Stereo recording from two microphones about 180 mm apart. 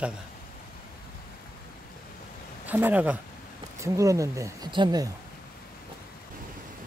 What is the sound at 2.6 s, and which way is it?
Speech, 10° right (ahead or behind).